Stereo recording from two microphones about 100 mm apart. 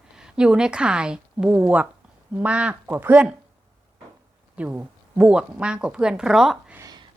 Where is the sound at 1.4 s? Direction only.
20° right (ahead or behind).